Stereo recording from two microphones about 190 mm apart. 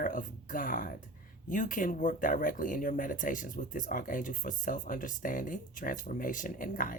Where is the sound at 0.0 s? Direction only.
45° left (ahead or behind).